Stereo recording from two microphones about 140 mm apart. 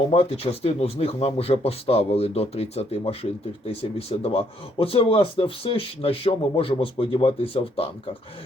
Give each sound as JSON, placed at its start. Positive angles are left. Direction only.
{"t": 0.1, "sound": "speech", "side_deg": 45}